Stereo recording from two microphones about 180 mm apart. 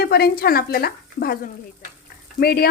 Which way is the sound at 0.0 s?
60° left (ahead or behind).